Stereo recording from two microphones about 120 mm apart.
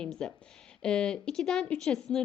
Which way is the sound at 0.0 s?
5° left (ahead or behind).